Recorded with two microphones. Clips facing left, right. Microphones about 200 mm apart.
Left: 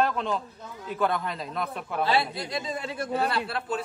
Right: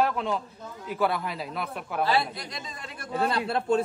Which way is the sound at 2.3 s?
30° left (ahead or behind).